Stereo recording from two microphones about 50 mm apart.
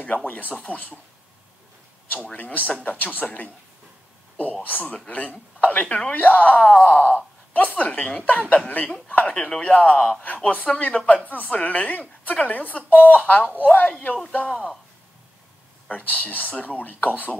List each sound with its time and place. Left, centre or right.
0.6 s speech: left
2.3 s speech: left
4.6 s speech: left
15.9 s speech: left